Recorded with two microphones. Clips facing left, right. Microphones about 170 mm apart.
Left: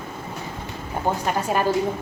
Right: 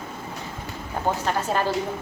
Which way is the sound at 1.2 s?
10° left (ahead or behind).